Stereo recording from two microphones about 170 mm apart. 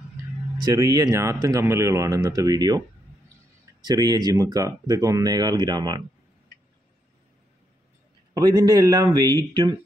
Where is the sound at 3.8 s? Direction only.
25° right (ahead or behind).